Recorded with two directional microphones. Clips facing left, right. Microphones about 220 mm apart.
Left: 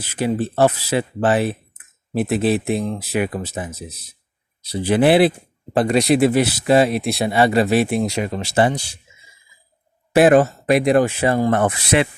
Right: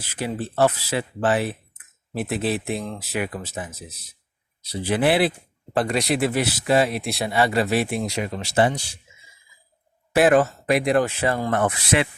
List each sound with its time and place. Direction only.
0.0 s speech: 20° left (ahead or behind)
3.4 s speech: 20° left (ahead or behind)
4.7 s speech: 25° left (ahead or behind)
10.2 s speech: 20° left (ahead or behind)
10.9 s speech: 20° left (ahead or behind)